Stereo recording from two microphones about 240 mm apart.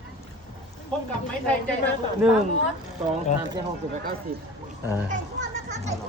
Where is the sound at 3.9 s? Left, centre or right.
Right.